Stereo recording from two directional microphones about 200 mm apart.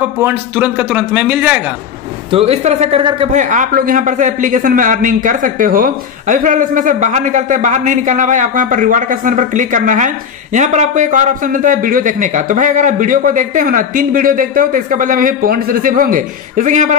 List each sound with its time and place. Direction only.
0.0 s speech: 10° right (ahead or behind)
2.3 s speech: 30° right (ahead or behind)
3.3 s a man's voice: 40° right (ahead or behind)